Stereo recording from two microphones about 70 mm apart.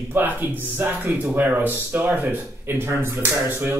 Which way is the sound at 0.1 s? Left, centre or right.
Right.